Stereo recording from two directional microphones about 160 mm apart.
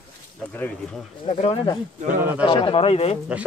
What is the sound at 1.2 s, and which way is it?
Speech, 35° left (ahead or behind).